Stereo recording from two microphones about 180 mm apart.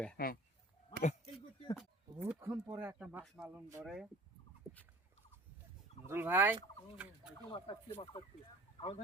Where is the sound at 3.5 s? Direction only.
15° right (ahead or behind).